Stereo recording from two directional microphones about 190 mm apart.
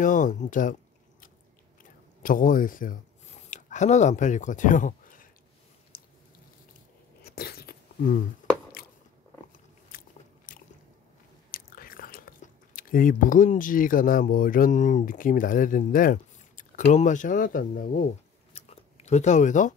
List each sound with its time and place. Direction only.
0.0 s speech: 40° left (ahead or behind)
2.2 s speech: 45° left (ahead or behind)
7.2 s a sound: 55° left (ahead or behind)
8.4 s squish: 40° left (ahead or behind)
9.8 s biting: 45° left (ahead or behind)
11.5 s speech: 50° left (ahead or behind)
18.5 s chewing: 35° left (ahead or behind)